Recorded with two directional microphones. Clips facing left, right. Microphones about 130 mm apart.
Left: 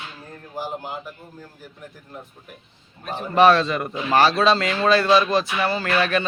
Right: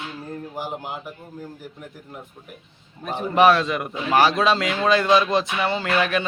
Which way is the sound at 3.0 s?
15° right (ahead or behind).